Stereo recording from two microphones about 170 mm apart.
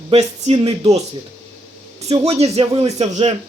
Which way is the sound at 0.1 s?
40° right (ahead or behind).